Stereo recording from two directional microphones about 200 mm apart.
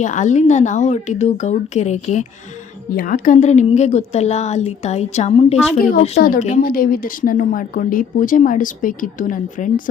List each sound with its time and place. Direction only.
0.0 s a woman's voice: 40° left (ahead or behind)